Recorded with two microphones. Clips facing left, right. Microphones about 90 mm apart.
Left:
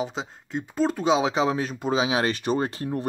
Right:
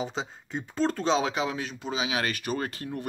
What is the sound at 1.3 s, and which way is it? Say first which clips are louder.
Speech: left 6 dB; 35° left (ahead or behind).